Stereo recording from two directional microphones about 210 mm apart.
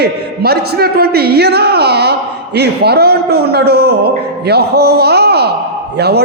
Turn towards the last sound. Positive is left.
turn(degrees=-50)  # may be behind; listen again after turning